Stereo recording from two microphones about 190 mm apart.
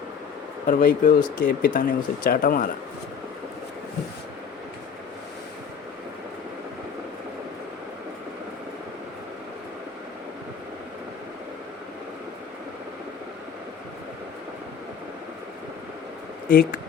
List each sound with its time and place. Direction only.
0.7 s speech: 45° left (ahead or behind)
16.5 s speech: 50° left (ahead or behind)